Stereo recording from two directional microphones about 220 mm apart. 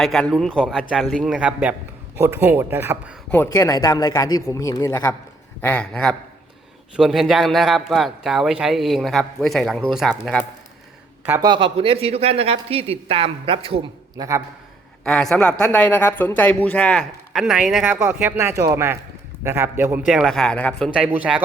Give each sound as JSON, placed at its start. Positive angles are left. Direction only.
{"t": 0.0, "sound": "speech", "side_deg": 0}
{"t": 3.3, "sound": "speech", "side_deg": 10}
{"t": 11.3, "sound": "speech", "side_deg": -20}
{"t": 15.0, "sound": "speech", "side_deg": 0}